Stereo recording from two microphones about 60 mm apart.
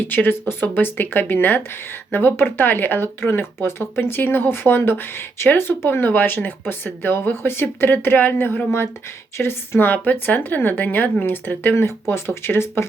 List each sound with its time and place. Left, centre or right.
0.0 s a woman's voice: left
11.8 s speech: left